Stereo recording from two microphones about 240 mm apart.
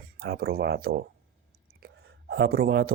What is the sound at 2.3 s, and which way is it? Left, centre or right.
Speech, right.